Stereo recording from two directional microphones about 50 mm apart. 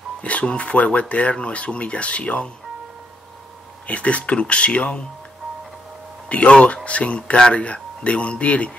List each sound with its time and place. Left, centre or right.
0.2 s speech: left
3.8 s speech: left
6.2 s speech: left